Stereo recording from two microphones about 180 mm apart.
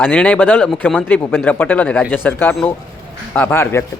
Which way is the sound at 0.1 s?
10° left (ahead or behind).